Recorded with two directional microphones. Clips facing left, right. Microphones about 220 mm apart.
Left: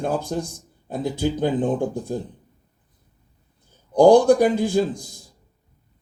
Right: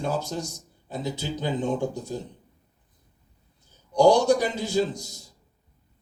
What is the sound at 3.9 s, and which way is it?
Speech, 55° left (ahead or behind).